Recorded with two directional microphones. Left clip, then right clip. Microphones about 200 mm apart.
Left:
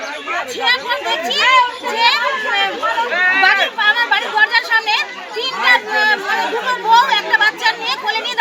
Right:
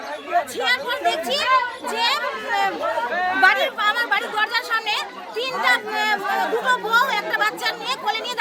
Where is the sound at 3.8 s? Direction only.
30° right (ahead or behind).